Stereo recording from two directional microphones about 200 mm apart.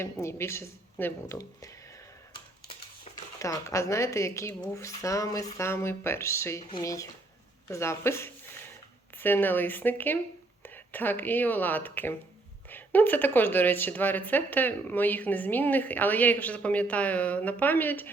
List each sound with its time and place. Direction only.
0.0 s speech: 15° left (ahead or behind)
2.3 s a sound: 25° left (ahead or behind)
3.3 s speech: 15° left (ahead or behind)